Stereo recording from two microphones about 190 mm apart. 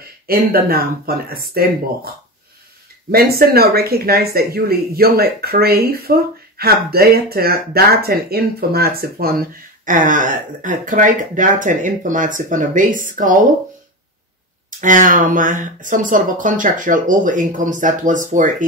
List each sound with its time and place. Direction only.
0.3 s speech: 50° right (ahead or behind)
3.1 s speech: 55° right (ahead or behind)
14.8 s speech: 45° right (ahead or behind)